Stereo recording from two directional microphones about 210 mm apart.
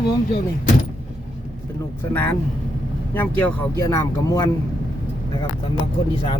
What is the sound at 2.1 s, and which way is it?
Speech, 10° left (ahead or behind).